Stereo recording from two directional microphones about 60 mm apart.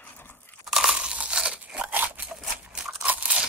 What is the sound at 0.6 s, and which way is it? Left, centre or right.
Crushing, centre.